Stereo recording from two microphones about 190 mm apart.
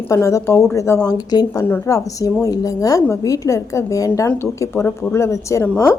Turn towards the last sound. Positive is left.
turn(degrees=15)  # may be behind; listen again after turning